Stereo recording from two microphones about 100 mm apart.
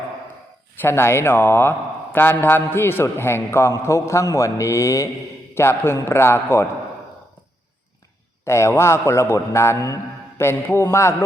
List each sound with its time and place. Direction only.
0.8 s a man's voice: 25° left (ahead or behind)
8.4 s a man's voice: 25° left (ahead or behind)